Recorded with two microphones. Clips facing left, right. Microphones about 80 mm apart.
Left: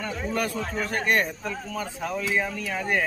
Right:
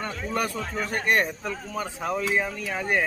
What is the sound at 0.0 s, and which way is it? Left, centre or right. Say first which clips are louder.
A man's voice: even; centre.